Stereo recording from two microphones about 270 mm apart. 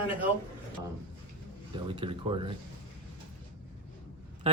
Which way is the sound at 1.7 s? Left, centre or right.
Centre.